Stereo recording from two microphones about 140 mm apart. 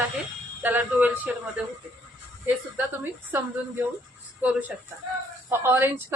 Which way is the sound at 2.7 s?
15° right (ahead or behind).